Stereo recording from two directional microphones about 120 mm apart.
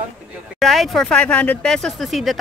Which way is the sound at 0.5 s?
Centre (ahead or behind).